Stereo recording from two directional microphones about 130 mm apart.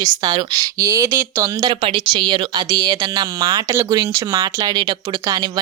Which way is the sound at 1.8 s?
40° right (ahead or behind).